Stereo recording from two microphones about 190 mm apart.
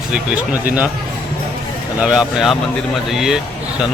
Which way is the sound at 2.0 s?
5° right (ahead or behind).